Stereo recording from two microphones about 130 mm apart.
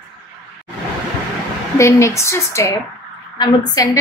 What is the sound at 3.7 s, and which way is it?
Speech, 30° left (ahead or behind).